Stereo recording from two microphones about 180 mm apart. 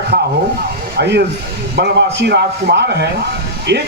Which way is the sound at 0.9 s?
70° right (ahead or behind).